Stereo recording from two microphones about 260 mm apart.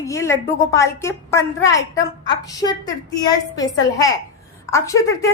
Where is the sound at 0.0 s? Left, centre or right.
Centre.